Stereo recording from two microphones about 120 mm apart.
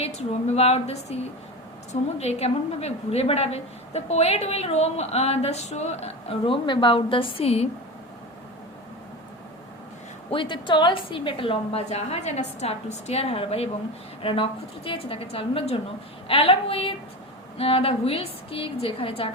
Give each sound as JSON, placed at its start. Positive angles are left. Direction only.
{"t": 0.0, "sound": "a woman's voice", "side_deg": 60}
{"t": 10.3, "sound": "a woman's voice", "side_deg": 45}